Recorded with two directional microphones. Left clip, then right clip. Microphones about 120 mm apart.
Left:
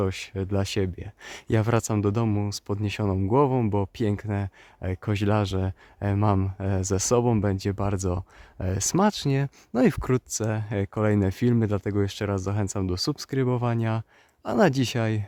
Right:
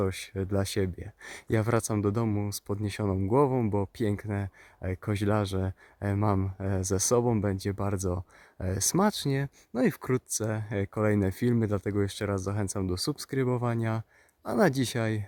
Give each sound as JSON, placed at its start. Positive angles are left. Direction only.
{"t": 0.0, "sound": "speech", "side_deg": 25}
{"t": 9.7, "sound": "speech", "side_deg": 40}